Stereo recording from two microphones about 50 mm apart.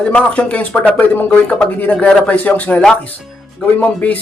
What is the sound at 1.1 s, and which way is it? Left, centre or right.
Speech, left.